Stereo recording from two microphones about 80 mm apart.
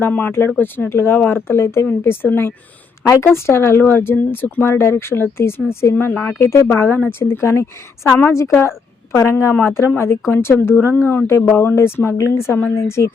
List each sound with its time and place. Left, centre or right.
0.0 s speech: left